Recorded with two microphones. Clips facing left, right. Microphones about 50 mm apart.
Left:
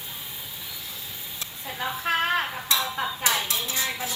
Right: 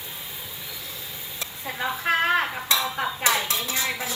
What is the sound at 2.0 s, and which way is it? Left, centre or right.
Speech, right.